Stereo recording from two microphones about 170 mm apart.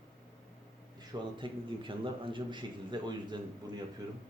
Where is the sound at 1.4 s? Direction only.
30° right (ahead or behind).